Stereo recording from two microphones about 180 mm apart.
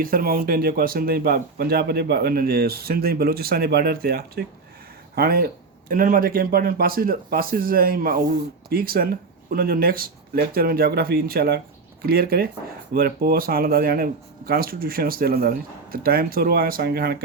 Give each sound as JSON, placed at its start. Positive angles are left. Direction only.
{"t": 0.0, "sound": "a man's voice", "side_deg": -55}